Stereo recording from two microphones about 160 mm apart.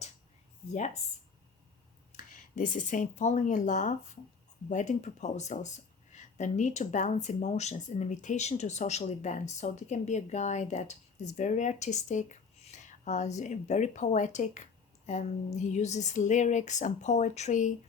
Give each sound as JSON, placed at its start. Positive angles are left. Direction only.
{"t": 0.7, "sound": "speech", "side_deg": 45}
{"t": 2.1, "sound": "speech", "side_deg": 55}